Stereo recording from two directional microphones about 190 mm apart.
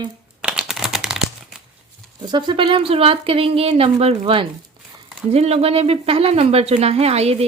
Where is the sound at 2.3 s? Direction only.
25° right (ahead or behind).